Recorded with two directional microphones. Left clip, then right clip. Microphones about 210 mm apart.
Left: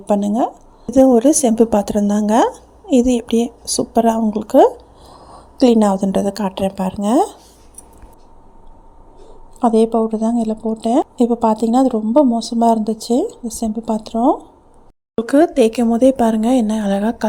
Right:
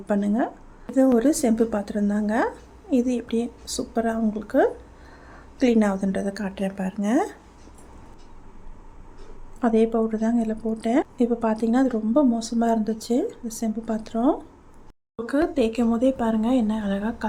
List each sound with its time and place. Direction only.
0.0 s a woman's voice: 20° left (ahead or behind)
9.6 s a woman's voice: 20° left (ahead or behind)
15.3 s a woman's voice: 30° left (ahead or behind)